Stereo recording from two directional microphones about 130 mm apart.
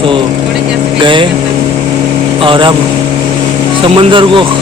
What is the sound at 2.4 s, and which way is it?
Speech, 40° right (ahead or behind).